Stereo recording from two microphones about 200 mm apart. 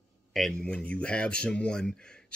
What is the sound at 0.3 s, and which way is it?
Speech, centre (ahead or behind).